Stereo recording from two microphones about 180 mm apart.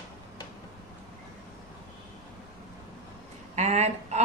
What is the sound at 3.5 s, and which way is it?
Speech, 40° right (ahead or behind).